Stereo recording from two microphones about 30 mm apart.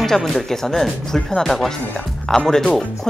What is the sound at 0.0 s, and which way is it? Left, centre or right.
Speech, centre.